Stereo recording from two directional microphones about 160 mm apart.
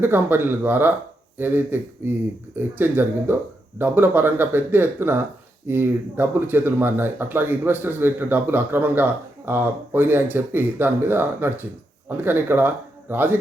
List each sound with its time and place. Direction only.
0.0 s speech: 15° right (ahead or behind)